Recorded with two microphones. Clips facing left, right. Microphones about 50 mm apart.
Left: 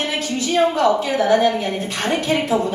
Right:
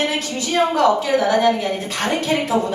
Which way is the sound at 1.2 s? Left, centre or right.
Left.